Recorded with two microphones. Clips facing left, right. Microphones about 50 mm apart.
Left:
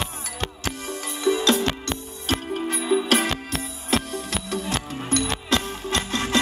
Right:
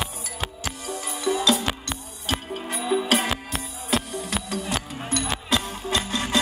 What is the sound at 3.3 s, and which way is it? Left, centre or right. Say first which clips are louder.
Music: left 1 dB; centre.